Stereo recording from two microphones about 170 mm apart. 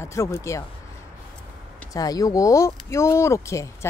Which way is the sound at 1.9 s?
20° left (ahead or behind).